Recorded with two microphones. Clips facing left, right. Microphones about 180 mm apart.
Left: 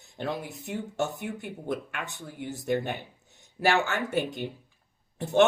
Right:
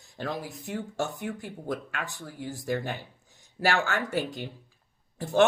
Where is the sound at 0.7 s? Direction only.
20° left (ahead or behind).